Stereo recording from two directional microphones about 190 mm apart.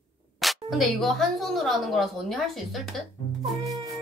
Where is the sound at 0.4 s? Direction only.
Centre (ahead or behind).